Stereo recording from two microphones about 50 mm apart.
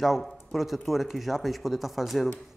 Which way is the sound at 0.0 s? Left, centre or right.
Centre.